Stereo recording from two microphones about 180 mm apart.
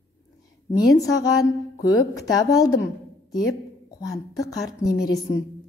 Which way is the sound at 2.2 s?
20° left (ahead or behind).